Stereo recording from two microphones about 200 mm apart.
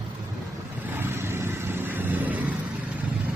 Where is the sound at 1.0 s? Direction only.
10° right (ahead or behind).